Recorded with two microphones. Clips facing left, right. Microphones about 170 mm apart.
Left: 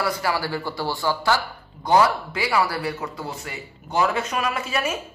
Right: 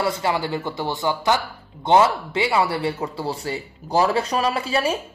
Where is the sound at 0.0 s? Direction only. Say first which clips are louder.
Right 2 dB; 25° right (ahead or behind).